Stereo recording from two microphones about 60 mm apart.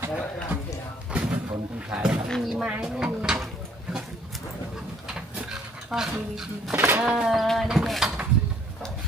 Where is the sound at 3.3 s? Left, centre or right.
Centre.